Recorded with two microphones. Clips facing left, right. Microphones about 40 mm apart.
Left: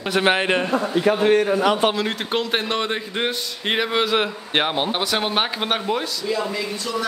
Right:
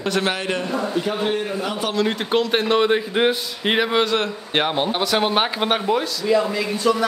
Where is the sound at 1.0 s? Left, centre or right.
Left.